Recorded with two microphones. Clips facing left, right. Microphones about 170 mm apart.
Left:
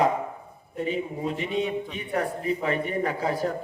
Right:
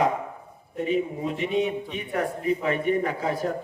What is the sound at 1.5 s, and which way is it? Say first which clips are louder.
Speech: right 3 dB; 5° right (ahead or behind).